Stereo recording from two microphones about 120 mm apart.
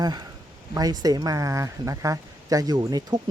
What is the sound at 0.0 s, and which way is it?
Speech, 35° right (ahead or behind).